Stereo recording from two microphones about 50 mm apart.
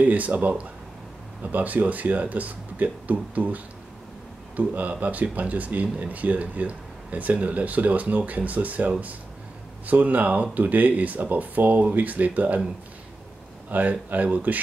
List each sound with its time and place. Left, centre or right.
0.0 s speech: right
13.7 s speech: right